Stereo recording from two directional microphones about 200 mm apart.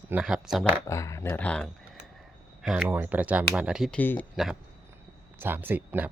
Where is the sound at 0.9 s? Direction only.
15° left (ahead or behind).